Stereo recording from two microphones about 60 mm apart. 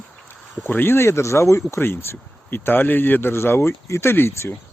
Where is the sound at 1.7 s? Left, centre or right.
Left.